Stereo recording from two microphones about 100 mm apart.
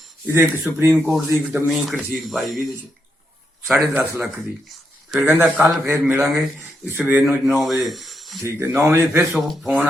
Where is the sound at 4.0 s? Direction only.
20° right (ahead or behind).